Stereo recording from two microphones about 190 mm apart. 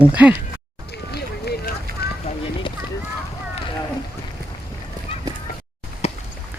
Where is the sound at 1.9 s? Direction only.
50° right (ahead or behind).